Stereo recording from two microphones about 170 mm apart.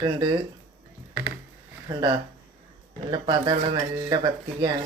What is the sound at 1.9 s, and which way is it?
Speech, 20° right (ahead or behind).